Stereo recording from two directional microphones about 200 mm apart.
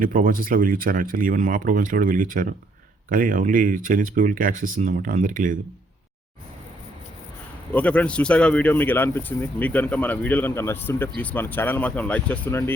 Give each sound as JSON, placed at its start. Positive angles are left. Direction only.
{"t": 0.0, "sound": "speech", "side_deg": -45}
{"t": 7.7, "sound": "speech", "side_deg": 5}